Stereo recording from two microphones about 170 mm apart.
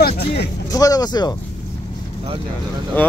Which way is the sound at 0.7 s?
20° left (ahead or behind).